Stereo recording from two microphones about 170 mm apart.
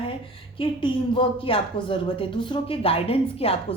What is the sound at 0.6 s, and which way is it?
A woman's voice, 30° left (ahead or behind).